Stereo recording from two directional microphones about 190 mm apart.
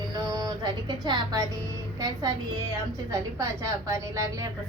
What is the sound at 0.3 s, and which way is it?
Speech, 20° right (ahead or behind).